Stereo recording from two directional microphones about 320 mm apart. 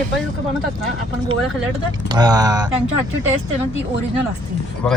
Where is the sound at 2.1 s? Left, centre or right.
Centre.